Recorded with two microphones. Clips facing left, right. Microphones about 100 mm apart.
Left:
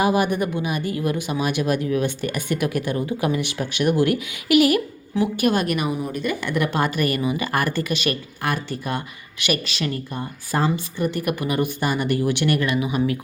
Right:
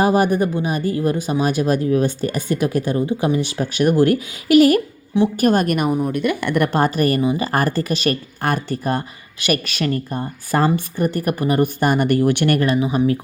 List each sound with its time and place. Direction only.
0.0 s speech: 40° right (ahead or behind)
12.6 s speech: 35° right (ahead or behind)